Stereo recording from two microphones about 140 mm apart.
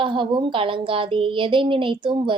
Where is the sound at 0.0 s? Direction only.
35° right (ahead or behind).